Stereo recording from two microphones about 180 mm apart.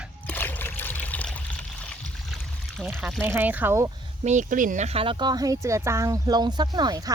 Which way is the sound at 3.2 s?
10° right (ahead or behind).